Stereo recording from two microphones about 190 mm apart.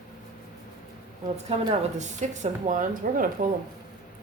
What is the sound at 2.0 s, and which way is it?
Speech, 40° right (ahead or behind).